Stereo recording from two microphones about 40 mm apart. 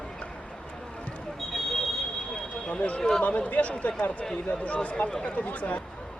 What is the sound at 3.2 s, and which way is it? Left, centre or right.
Speech, left.